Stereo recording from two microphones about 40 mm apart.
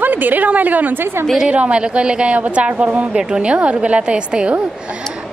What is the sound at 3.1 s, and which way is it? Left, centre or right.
Speech, right.